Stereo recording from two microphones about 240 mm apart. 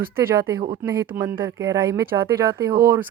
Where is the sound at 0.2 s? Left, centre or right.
Centre.